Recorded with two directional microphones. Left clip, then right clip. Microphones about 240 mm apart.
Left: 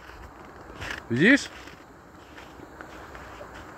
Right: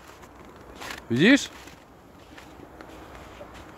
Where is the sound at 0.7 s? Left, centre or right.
Centre.